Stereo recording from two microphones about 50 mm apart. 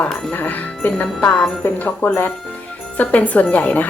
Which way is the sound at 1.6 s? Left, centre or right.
Left.